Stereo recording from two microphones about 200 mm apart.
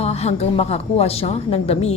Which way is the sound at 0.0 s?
30° left (ahead or behind).